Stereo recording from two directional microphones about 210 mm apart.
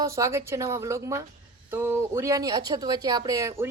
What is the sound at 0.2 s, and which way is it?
Speech, 15° right (ahead or behind).